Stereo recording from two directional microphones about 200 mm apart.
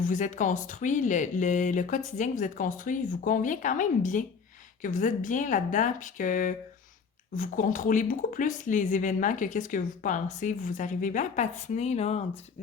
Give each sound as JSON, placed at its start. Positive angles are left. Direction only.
{"t": 0.0, "sound": "speech", "side_deg": 40}